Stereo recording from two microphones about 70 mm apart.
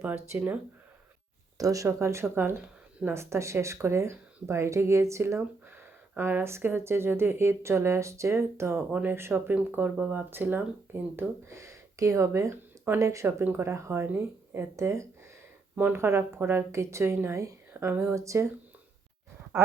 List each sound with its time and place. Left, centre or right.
0.3 s speech: right
1.5 s speech: right
5.4 s speech: right
8.9 s speech: right
9.1 s speech: right
11.4 s speech: right
13.4 s speech: right
13.7 s speech: right
14.1 s speech: right
14.8 s speech: right
15.8 s speech: right
17.2 s a sound: right
18.1 s speech: right
19.5 s speech: right